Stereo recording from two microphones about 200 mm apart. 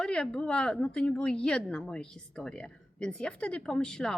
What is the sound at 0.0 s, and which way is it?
Speech, 5° left (ahead or behind).